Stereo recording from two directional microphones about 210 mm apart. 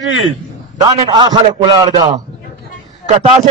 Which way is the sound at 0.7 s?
20° right (ahead or behind).